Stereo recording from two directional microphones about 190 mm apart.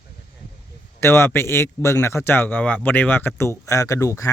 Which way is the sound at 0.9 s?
15° left (ahead or behind).